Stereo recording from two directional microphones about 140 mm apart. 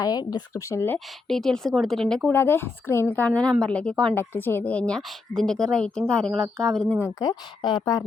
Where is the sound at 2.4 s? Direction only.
15° left (ahead or behind).